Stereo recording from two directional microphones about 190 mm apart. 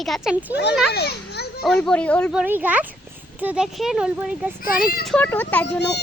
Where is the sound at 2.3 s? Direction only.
5° right (ahead or behind).